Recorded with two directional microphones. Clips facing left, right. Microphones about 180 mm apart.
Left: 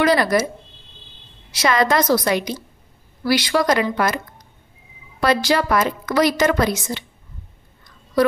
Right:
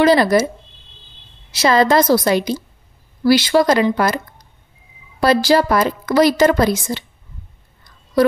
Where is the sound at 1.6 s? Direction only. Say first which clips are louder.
Right 4 dB; 30° right (ahead or behind).